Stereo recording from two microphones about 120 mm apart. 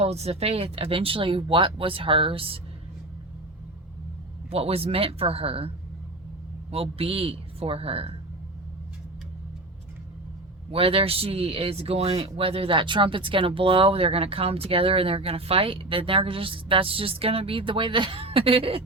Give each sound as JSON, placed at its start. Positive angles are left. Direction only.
{"t": 0.0, "sound": "speech", "side_deg": -60}
{"t": 4.4, "sound": "speech", "side_deg": -55}
{"t": 10.7, "sound": "speech", "side_deg": -50}